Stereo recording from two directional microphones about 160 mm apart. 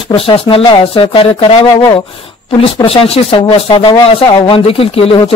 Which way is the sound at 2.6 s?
35° left (ahead or behind).